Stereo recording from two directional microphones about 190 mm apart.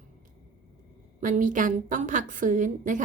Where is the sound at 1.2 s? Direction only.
45° right (ahead or behind).